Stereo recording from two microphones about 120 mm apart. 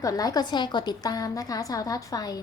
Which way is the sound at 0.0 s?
30° left (ahead or behind).